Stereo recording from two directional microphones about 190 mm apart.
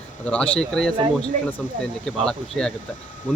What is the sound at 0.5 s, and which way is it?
Speech, 5° left (ahead or behind).